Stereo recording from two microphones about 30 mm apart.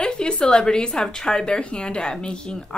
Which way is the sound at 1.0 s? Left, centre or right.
Left.